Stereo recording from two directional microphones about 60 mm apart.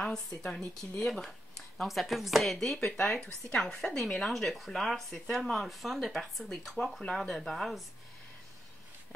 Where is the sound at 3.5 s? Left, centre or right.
Centre.